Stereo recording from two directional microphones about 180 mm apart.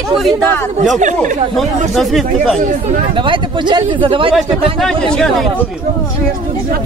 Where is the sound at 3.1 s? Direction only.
25° right (ahead or behind).